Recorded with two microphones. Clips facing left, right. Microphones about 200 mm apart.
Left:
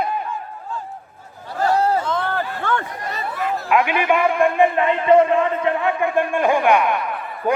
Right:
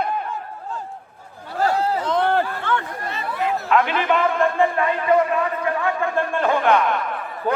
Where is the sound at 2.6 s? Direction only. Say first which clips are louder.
Left 1 dB; 45° left (ahead or behind).